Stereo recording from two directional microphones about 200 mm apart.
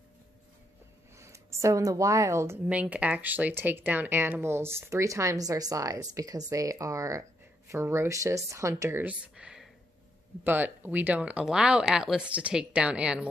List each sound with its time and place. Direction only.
1.1 s a woman's voice: 15° right (ahead or behind)